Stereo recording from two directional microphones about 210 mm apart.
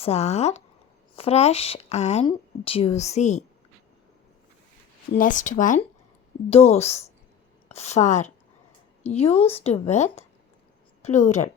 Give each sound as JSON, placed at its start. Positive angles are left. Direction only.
{"t": 0.0, "sound": "speech", "side_deg": 30}
{"t": 5.1, "sound": "speech", "side_deg": 40}